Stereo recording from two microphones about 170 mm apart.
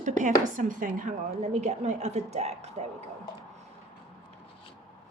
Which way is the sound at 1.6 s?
40° right (ahead or behind).